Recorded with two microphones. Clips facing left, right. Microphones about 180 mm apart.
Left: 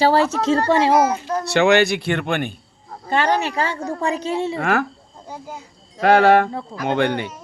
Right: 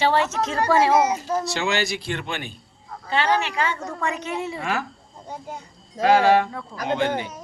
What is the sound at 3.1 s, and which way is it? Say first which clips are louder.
A woman's voice: left 3 dB; 45° left (ahead or behind).